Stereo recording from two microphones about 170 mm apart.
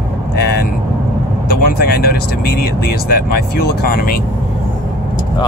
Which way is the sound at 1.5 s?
65° left (ahead or behind).